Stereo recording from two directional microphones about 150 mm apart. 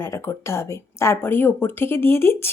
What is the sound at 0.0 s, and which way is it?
A woman's voice, 20° left (ahead or behind).